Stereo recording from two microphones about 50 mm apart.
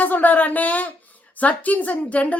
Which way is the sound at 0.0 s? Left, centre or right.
Left.